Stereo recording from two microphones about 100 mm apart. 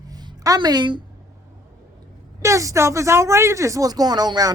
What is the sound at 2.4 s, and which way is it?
A woman's voice, 30° right (ahead or behind).